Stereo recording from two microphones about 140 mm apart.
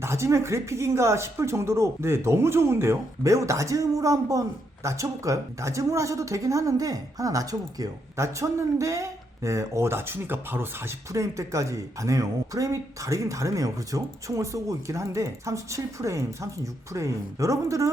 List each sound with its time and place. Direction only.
0.0 s speech: 20° right (ahead or behind)